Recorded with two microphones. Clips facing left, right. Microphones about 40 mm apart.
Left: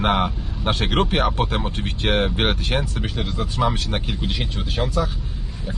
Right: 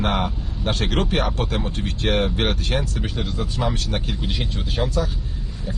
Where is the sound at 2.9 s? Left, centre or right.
Centre.